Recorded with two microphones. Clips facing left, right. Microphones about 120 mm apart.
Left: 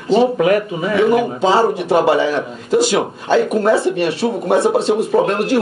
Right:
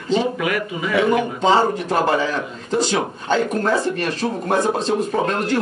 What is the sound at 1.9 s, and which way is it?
Speech, 20° left (ahead or behind).